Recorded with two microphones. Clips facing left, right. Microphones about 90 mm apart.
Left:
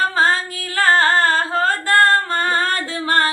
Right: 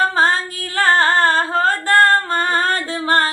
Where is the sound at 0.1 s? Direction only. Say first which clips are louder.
Right 1 dB; 25° right (ahead or behind).